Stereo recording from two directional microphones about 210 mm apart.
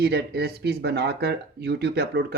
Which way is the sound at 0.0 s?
50° right (ahead or behind).